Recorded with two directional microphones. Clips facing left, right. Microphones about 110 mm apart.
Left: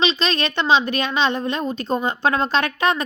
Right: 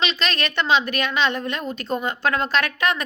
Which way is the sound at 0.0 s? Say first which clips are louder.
Left 4 dB; 25° left (ahead or behind).